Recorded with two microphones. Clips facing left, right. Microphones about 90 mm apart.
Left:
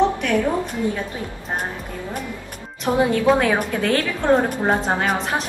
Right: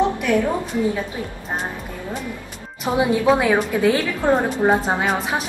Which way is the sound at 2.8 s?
10° right (ahead or behind).